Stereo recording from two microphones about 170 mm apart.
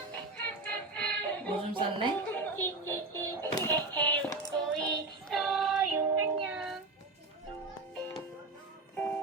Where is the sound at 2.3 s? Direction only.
10° left (ahead or behind).